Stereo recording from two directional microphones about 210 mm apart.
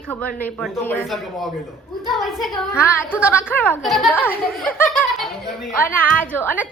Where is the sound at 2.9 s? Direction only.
10° left (ahead or behind).